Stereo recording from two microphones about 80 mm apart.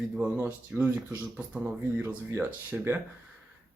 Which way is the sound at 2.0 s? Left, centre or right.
Right.